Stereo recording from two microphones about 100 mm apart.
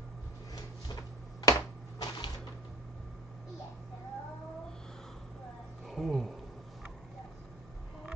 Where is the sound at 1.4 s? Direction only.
40° left (ahead or behind).